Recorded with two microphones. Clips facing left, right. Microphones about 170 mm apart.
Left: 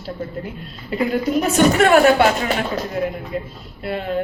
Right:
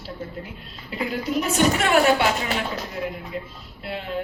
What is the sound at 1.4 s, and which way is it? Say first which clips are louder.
A woman's voice: left 6 dB; 50° left (ahead or behind).